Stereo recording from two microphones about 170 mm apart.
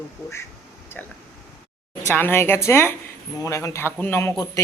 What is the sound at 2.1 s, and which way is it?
A man's voice, 15° left (ahead or behind).